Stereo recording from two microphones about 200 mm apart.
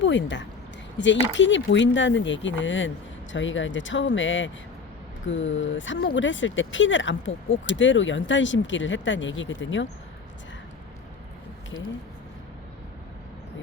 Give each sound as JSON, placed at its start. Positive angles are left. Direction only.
{"t": 0.0, "sound": "speech", "side_deg": 65}